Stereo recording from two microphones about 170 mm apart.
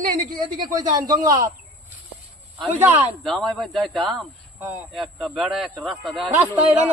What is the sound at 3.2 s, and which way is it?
Speech, centre (ahead or behind).